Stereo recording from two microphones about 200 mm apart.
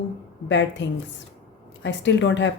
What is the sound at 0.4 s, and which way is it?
A woman's voice, 65° left (ahead or behind).